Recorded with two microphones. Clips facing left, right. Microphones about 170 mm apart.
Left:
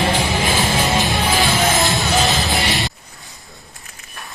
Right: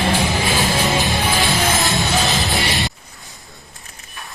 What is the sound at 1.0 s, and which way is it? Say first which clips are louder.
Music: left 1 dB; centre (ahead or behind).